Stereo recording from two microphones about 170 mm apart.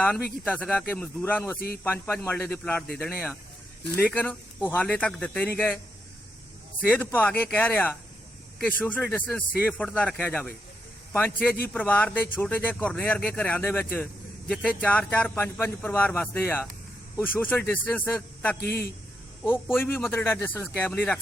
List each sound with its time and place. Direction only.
0.4 s speech: 10° left (ahead or behind)
1.5 s speech: 65° left (ahead or behind)
1.8 s speech: 10° left (ahead or behind)
3.9 s speech: 10° left (ahead or behind)
6.8 s speech: 10° left (ahead or behind)
20.1 s speech: 15° left (ahead or behind)